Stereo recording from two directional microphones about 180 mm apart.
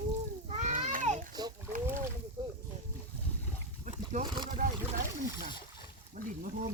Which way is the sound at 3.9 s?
40° right (ahead or behind).